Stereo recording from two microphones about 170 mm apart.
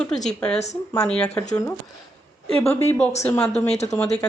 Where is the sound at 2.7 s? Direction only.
15° left (ahead or behind).